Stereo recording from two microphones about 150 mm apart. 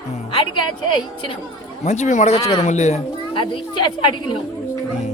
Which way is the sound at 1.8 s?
50° left (ahead or behind).